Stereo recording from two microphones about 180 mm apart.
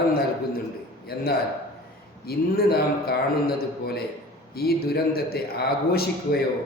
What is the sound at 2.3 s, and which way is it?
A man's voice, 60° left (ahead or behind).